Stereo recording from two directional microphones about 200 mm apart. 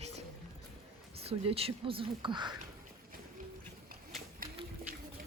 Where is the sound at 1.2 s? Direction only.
30° right (ahead or behind).